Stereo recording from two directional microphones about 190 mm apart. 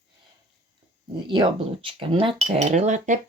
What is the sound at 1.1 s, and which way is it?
Speech, 25° right (ahead or behind).